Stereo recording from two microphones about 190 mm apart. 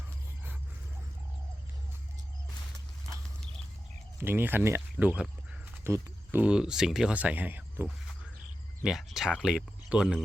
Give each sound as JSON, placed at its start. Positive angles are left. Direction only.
{"t": 4.2, "sound": "speech", "side_deg": -10}